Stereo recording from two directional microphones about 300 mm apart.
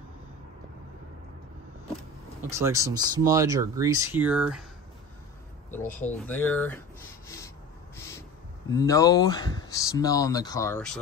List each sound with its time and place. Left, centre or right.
2.5 s speech: centre
5.9 s speech: centre
7.2 s rub: centre
8.6 s speech: centre